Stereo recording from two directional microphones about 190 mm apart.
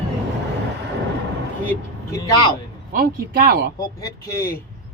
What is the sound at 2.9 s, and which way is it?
Speech, 50° right (ahead or behind).